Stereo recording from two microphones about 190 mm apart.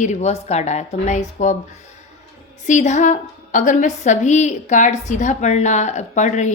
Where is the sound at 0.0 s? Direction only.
35° left (ahead or behind).